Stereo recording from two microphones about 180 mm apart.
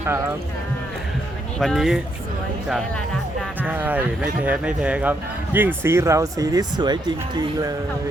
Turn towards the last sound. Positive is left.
turn(degrees=-25)  # may be behind; listen again after turning